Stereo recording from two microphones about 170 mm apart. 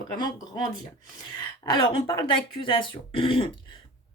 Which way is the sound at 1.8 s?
30° left (ahead or behind).